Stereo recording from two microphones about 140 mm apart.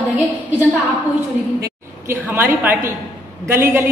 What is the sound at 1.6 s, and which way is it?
A woman's voice, 15° right (ahead or behind).